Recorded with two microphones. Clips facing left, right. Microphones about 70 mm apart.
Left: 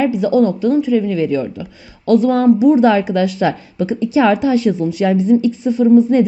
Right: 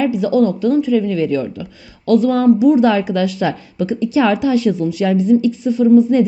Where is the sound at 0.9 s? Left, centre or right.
Centre.